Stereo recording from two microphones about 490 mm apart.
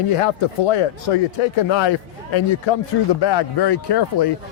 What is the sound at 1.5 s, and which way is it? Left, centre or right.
A man's voice, left.